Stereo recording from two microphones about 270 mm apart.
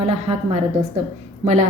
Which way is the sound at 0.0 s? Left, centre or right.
Right.